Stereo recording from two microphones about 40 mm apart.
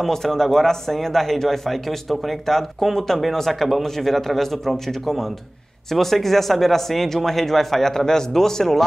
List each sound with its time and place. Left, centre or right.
0.0 s speech: centre